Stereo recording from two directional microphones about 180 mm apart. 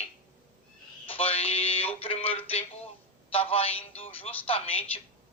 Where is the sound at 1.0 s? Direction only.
30° left (ahead or behind).